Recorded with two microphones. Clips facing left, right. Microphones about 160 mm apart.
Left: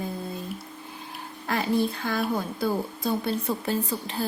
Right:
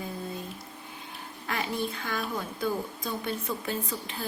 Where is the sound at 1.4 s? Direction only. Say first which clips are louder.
Left 7 dB; 35° left (ahead or behind).